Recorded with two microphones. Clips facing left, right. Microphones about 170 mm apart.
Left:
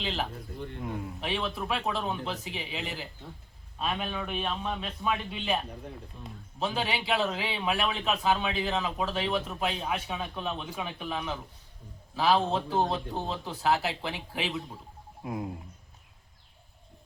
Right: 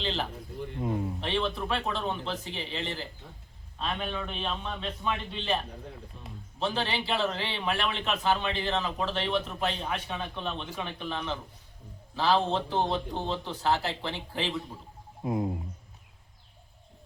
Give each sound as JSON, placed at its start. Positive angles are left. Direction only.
{"t": 0.0, "sound": "speech", "side_deg": 5}
{"t": 0.8, "sound": "speech", "side_deg": -25}
{"t": 1.2, "sound": "speech", "side_deg": 5}
{"t": 15.2, "sound": "speech", "side_deg": -25}